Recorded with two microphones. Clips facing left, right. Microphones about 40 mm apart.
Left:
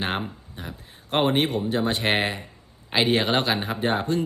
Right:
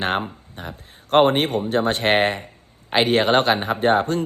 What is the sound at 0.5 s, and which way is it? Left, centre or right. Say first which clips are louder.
Speech: right 3 dB; right.